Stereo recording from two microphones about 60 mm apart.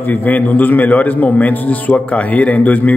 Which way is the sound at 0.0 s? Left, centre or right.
Left.